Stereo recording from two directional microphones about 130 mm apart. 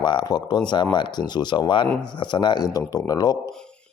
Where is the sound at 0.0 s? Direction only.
35° left (ahead or behind).